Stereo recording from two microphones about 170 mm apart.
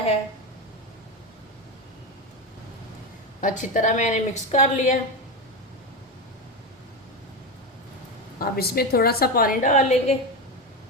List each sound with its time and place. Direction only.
3.4 s a woman's voice: 50° left (ahead or behind)
8.4 s a woman's voice: 65° left (ahead or behind); by 10.2 s 40° left (ahead or behind)